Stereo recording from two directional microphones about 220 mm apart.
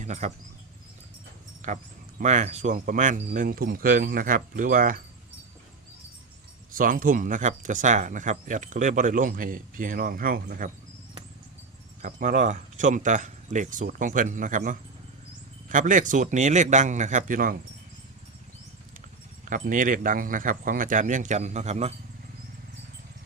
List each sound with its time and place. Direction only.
0.0 s speech: 30° right (ahead or behind)
1.6 s speech: 35° right (ahead or behind)
6.7 s speech: 40° right (ahead or behind)
12.0 s speech: 35° right (ahead or behind)
19.5 s speech: 40° right (ahead or behind)